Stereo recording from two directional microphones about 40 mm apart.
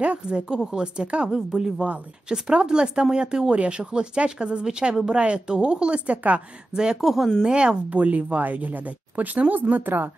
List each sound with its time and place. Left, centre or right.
0.0 s speech: right
0.7 s speech: right
6.7 s speech: centre
7.0 s speech: centre
7.4 s speech: right
7.9 s speech: right